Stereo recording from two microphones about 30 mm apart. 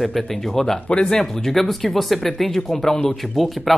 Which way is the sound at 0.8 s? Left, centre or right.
Left.